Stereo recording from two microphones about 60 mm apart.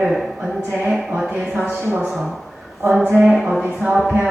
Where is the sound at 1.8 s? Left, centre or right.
Right.